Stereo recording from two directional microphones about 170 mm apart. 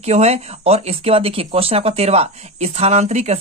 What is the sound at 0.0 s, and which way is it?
Speech, 40° right (ahead or behind).